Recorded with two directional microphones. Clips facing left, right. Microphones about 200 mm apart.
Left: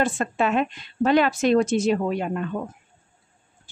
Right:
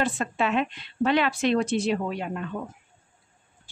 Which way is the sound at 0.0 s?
45° left (ahead or behind).